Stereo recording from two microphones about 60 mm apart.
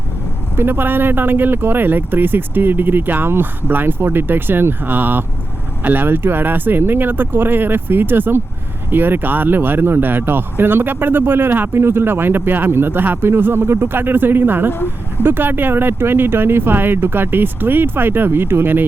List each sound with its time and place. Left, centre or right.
0.5 s speech: right